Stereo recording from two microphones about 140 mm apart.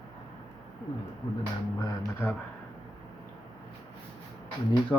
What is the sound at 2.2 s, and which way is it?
Speech, 15° left (ahead or behind).